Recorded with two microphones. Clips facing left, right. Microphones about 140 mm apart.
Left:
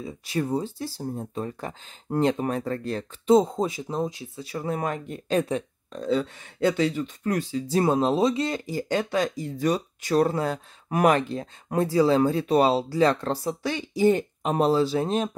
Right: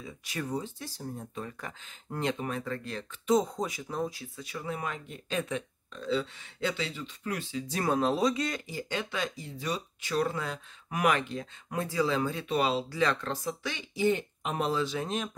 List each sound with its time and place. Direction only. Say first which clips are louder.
0.0 s speech: left 9 dB; 30° left (ahead or behind)
4.5 s speech: left 8 dB; 40° left (ahead or behind)